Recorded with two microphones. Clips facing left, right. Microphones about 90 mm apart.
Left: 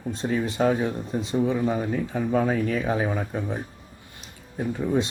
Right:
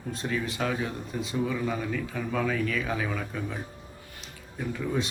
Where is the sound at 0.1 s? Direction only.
30° left (ahead or behind).